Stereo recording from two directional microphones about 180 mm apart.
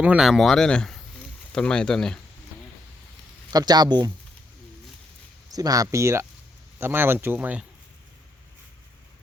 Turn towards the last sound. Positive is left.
turn(degrees=-10)  # may be behind; listen again after turning